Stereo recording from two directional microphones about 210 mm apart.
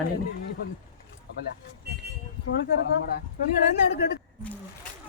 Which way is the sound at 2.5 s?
55° left (ahead or behind).